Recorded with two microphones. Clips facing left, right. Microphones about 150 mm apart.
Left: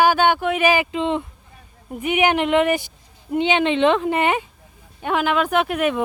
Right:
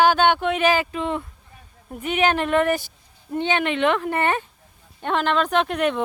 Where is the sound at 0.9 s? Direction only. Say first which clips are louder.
Left 4 dB; 20° left (ahead or behind).